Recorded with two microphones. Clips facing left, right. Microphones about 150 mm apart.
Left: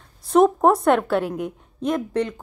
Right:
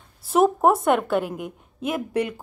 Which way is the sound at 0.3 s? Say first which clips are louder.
Left 2 dB; 5° right (ahead or behind).